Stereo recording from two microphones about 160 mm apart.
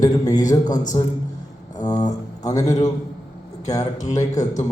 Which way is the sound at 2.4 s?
20° left (ahead or behind).